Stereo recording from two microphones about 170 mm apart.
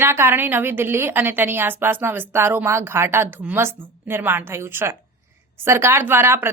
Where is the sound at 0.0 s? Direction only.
15° right (ahead or behind).